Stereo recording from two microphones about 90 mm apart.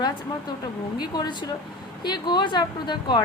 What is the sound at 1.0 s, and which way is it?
A woman's voice, 55° left (ahead or behind).